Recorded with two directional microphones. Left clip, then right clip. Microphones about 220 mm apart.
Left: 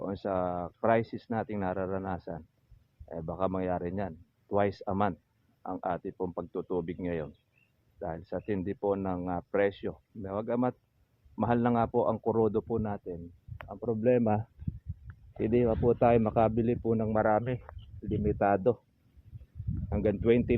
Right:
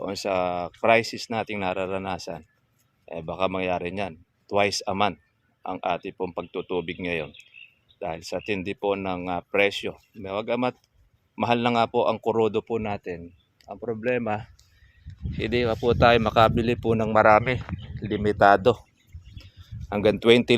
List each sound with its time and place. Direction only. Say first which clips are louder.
0.0 s speech: right 6 dB; 10° right (ahead or behind)
8.4 s speech: right 4 dB; 5° right (ahead or behind)
14.0 s speech: even; 35° left (ahead or behind)
15.4 s speech: right 3 dB; 10° left (ahead or behind)
15.7 s speech: right 8 dB; 5° right (ahead or behind); by 16.8 s 20° right (ahead or behind)
16.8 s speech: right 11 dB; 30° right (ahead or behind)
19.9 s speech: right 8 dB; 40° right (ahead or behind)